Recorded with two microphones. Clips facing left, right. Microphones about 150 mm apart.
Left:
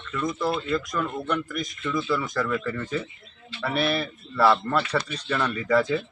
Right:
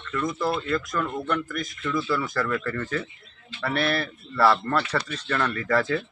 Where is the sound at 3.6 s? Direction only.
5° left (ahead or behind).